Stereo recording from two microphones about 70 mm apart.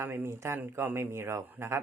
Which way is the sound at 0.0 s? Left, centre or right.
Right.